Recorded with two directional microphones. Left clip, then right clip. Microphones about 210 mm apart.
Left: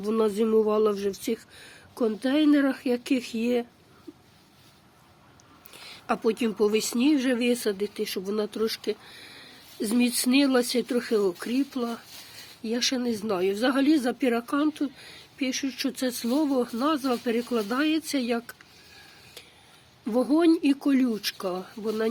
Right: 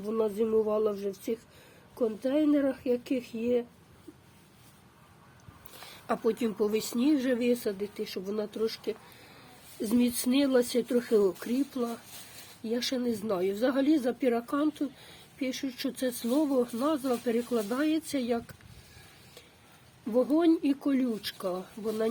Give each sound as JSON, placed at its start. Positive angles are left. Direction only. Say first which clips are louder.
{"t": 0.0, "sound": "speech", "louder": "left 4 dB", "side_deg": 15}
{"t": 6.1, "sound": "speech", "louder": "left 3 dB", "side_deg": 10}
{"t": 20.1, "sound": "speech", "louder": "left 3 dB", "side_deg": 15}